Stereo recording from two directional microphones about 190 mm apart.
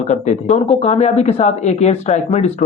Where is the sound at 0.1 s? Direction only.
35° left (ahead or behind).